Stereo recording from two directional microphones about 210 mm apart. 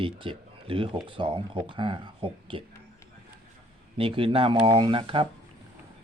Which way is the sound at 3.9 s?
25° right (ahead or behind).